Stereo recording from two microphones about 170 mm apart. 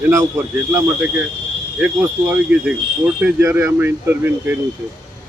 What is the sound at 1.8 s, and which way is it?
Speech, 10° right (ahead or behind).